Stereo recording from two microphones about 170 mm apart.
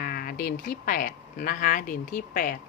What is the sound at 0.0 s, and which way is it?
Speech, 60° left (ahead or behind).